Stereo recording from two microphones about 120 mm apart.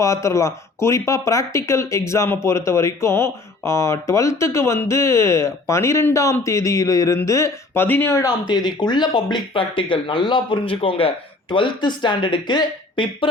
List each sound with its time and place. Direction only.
0.0 s speech: 25° left (ahead or behind)
8.2 s speech: 35° left (ahead or behind)